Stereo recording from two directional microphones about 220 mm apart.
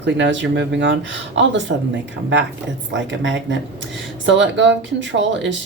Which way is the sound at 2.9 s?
60° right (ahead or behind).